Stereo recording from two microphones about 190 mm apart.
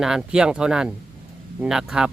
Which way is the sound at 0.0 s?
5° right (ahead or behind).